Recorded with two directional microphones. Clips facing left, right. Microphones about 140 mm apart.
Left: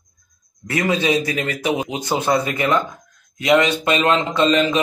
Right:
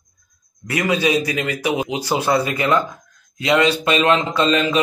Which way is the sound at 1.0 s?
25° left (ahead or behind).